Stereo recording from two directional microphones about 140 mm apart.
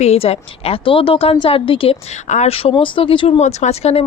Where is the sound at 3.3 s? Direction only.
55° left (ahead or behind).